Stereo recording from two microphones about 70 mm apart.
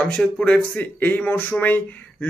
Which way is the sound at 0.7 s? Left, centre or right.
Left.